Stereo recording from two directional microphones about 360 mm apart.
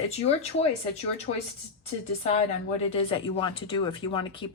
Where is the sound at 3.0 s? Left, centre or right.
Centre.